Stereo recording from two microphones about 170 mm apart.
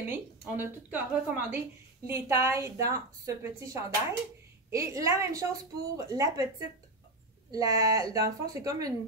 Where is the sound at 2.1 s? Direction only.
15° right (ahead or behind).